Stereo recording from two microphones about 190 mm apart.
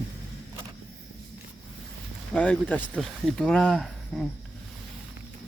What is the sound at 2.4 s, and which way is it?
Speech, 5° left (ahead or behind).